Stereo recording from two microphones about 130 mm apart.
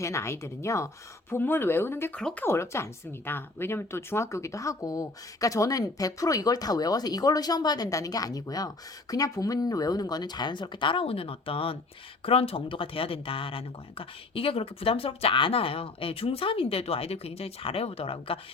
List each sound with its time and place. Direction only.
0.0 s speech: 20° left (ahead or behind); by 18.3 s 45° left (ahead or behind)